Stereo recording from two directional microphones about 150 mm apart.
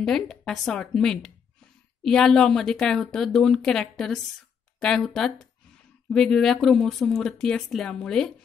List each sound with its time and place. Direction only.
0.0 s speech: 5° left (ahead or behind)